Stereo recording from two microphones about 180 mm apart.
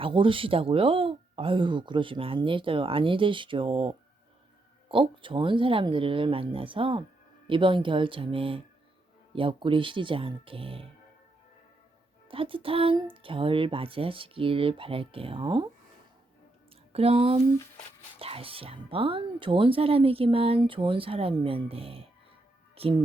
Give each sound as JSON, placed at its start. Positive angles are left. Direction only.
{"t": 0.0, "sound": "speech", "side_deg": -30}
{"t": 12.3, "sound": "speech", "side_deg": -30}
{"t": 16.9, "sound": "speech", "side_deg": -35}
{"t": 22.7, "sound": "music", "side_deg": -30}